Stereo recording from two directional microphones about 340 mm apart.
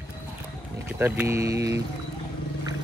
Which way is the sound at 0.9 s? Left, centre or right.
Centre.